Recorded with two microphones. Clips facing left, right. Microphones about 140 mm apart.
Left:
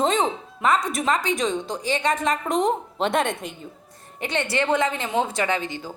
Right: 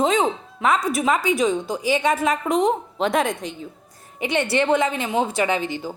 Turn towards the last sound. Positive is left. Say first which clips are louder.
# right 4 dB
turn(degrees=-25)  # may be behind; listen again after turning